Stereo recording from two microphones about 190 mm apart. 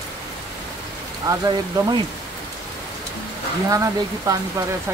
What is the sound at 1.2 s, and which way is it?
Speech, 20° right (ahead or behind).